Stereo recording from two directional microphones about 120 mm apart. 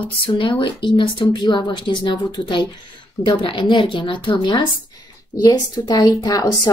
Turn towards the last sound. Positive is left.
turn(degrees=30)  # may be behind; listen again after turning